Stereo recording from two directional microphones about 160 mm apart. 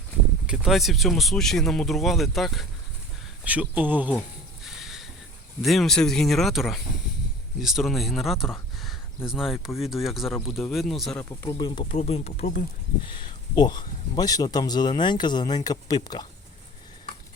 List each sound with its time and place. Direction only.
0.4 s speech: 5° right (ahead or behind)
4.6 s a sound: centre (ahead or behind)
5.6 s speech: centre (ahead or behind)
11.3 s speech: 20° left (ahead or behind); by 12.5 s 40° left (ahead or behind)
13.1 s speech: 30° left (ahead or behind)